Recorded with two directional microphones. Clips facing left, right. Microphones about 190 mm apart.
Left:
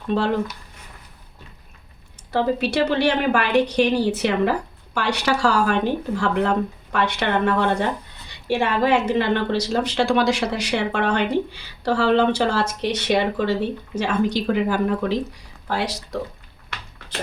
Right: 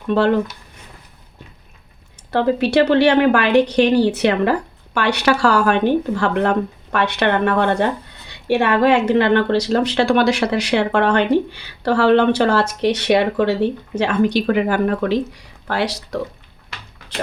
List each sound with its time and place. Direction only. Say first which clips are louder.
2.3 s a woman's voice: right 5 dB; 65° right (ahead or behind)